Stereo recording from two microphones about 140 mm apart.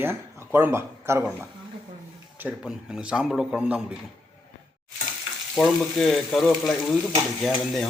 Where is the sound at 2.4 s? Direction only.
5° right (ahead or behind).